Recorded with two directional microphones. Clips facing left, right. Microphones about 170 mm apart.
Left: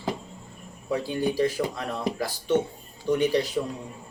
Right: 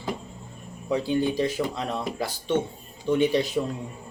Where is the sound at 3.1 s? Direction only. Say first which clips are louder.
Right 1 dB; 20° right (ahead or behind).